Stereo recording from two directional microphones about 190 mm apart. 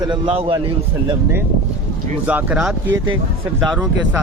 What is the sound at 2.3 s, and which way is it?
Speech, 5° right (ahead or behind).